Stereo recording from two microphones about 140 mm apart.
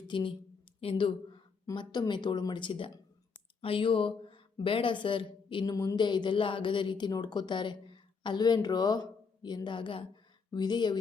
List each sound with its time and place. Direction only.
0.1 s speech: 35° left (ahead or behind)
5.7 s speech: 25° left (ahead or behind)